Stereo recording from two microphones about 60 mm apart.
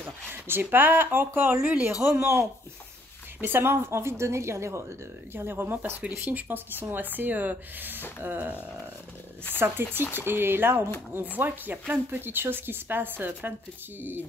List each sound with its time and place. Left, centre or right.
0.5 s speech: right
2.1 s speech: right
5.3 s speech: right
9.8 s speech: right